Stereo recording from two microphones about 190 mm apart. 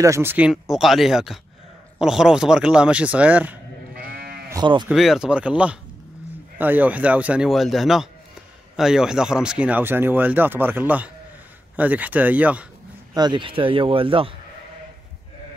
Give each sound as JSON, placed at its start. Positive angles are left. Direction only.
{"t": 0.0, "sound": "speech", "side_deg": -15}
{"t": 4.0, "sound": "sheep", "side_deg": -50}
{"t": 4.5, "sound": "speech", "side_deg": -20}
{"t": 4.8, "sound": "speech", "side_deg": 0}
{"t": 13.1, "sound": "speech", "side_deg": -25}